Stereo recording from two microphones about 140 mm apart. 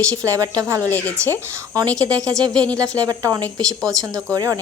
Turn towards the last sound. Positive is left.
turn(degrees=-25)  # may be behind; listen again after turning